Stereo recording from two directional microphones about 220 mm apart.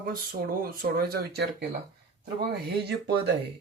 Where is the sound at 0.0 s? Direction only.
40° right (ahead or behind).